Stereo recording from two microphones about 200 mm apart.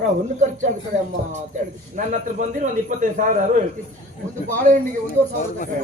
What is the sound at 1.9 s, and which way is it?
A man's voice, 40° right (ahead or behind).